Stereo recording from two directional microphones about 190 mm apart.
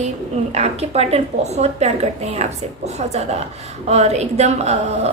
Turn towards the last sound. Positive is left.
turn(degrees=-35)  # may be behind; listen again after turning